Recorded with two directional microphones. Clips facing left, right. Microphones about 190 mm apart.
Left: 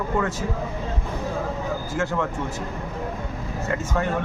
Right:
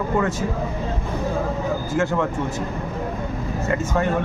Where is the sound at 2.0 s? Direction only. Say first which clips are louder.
Right 3 dB; 20° right (ahead or behind).